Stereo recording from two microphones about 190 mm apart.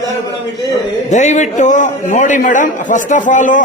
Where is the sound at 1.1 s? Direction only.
40° left (ahead or behind).